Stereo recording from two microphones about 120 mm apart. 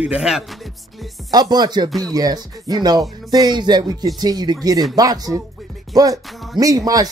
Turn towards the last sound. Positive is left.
turn(degrees=-30)  # may be behind; listen again after turning